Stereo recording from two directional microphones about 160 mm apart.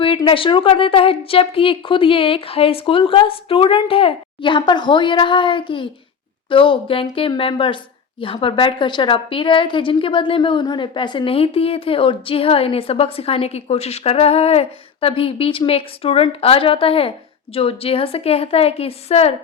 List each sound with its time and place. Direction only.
0.3 s a woman's voice: 35° left (ahead or behind)